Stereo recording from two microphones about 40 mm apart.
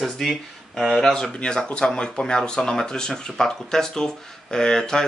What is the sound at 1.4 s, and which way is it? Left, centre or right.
Speech, left.